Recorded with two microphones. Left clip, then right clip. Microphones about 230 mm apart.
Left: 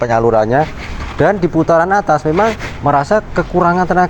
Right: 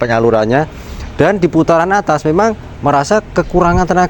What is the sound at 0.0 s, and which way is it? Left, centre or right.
Speech, right.